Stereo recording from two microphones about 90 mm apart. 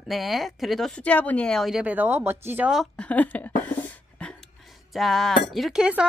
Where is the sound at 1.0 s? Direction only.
15° left (ahead or behind).